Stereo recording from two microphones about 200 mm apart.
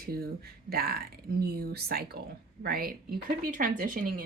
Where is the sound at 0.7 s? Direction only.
50° right (ahead or behind).